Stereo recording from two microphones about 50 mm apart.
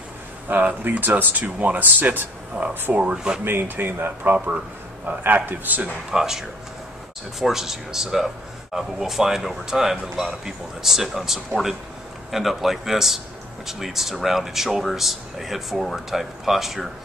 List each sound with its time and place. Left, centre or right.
0.5 s speech: right
3.4 s speech: right
6.0 s speech: centre